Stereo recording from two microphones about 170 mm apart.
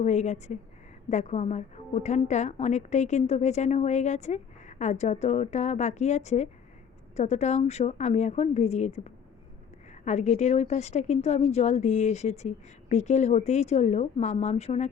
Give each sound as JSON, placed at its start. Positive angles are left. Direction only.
{"t": 0.0, "sound": "a woman's voice", "side_deg": 45}